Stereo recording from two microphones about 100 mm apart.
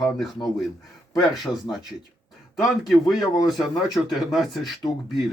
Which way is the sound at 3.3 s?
45° left (ahead or behind).